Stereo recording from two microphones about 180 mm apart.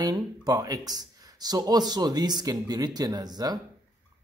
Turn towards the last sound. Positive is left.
turn(degrees=-20)  # may be behind; listen again after turning